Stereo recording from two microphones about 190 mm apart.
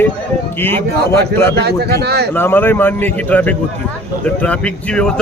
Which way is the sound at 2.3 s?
10° left (ahead or behind).